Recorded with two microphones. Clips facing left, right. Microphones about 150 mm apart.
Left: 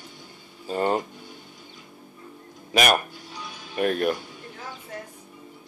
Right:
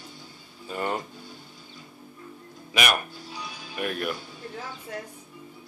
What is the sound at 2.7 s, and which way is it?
Speech, 40° left (ahead or behind).